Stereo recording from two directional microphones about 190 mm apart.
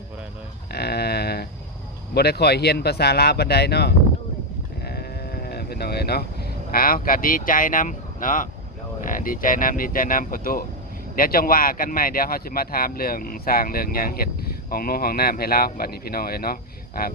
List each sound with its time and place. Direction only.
0.7 s sheep: 55° left (ahead or behind)
2.1 s speech: 60° left (ahead or behind)
4.8 s sheep: 55° left (ahead or behind)
9.0 s speech: 45° left (ahead or behind)